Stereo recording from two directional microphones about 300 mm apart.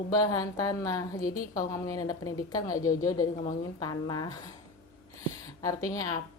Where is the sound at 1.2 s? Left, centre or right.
Left.